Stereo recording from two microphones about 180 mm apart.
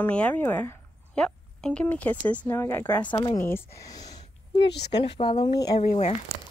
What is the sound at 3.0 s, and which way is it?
Speech, 25° left (ahead or behind).